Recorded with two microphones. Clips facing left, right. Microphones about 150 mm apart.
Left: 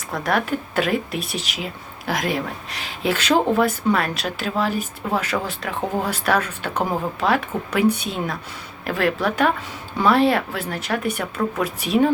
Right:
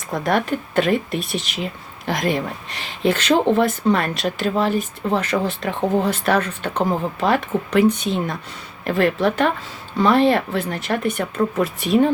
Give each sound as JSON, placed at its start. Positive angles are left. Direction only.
{"t": 0.1, "sound": "speech", "side_deg": 0}